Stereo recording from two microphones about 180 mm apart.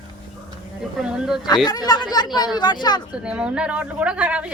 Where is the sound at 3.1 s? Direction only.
5° right (ahead or behind).